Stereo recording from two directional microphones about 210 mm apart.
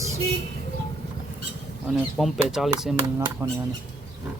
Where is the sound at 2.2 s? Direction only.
Centre (ahead or behind).